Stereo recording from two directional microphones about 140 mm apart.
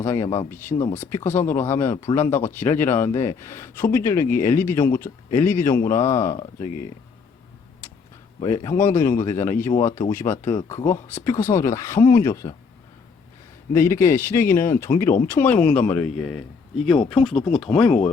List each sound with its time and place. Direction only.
0.0 s a man's voice: 15° left (ahead or behind)
8.4 s a man's voice: 20° left (ahead or behind)
13.7 s a man's voice: 20° left (ahead or behind)
17.1 s speech: centre (ahead or behind)